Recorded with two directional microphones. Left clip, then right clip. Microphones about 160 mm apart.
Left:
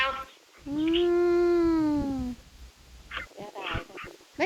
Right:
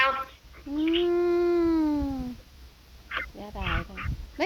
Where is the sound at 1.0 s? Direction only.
50° left (ahead or behind).